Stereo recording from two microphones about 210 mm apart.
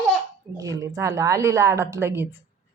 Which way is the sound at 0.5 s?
15° right (ahead or behind).